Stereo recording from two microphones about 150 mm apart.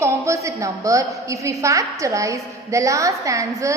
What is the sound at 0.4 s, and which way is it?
A woman's voice, 20° right (ahead or behind).